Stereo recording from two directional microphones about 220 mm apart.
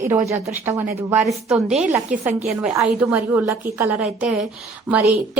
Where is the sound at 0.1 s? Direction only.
15° right (ahead or behind).